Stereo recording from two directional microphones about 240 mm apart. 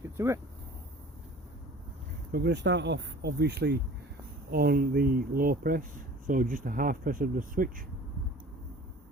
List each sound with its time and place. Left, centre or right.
0.2 s speech: centre
2.3 s speech: right